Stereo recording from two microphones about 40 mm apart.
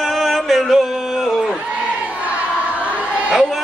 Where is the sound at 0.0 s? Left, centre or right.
Centre.